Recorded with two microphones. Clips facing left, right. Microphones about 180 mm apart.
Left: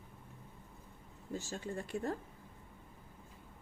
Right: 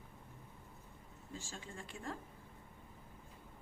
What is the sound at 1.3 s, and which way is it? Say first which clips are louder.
Speech: left 9 dB; 40° left (ahead or behind).